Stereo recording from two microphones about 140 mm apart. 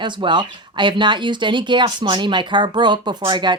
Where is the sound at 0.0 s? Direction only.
35° right (ahead or behind).